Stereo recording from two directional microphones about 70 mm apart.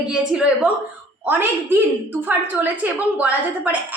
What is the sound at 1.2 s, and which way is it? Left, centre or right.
A woman's voice, right.